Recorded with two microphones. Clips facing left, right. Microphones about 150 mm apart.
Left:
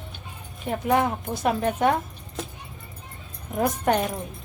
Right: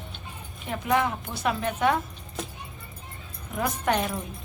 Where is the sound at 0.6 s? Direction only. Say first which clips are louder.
Left 3 dB; 45° left (ahead or behind).